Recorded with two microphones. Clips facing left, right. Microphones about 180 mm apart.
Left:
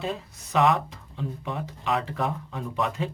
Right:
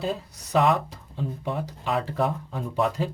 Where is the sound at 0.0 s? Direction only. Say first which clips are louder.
Right 2 dB; 35° right (ahead or behind).